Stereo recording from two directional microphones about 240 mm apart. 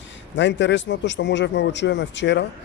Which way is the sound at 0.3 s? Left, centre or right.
Left.